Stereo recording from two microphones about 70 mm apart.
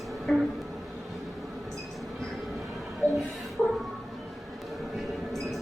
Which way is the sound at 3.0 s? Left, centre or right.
Right.